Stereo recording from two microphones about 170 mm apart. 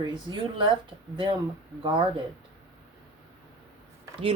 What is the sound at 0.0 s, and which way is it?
Speech, 25° right (ahead or behind).